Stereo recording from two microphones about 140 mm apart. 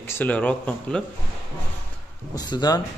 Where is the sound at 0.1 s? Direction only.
10° left (ahead or behind).